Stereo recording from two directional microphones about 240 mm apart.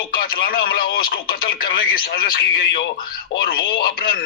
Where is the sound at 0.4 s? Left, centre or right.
Left.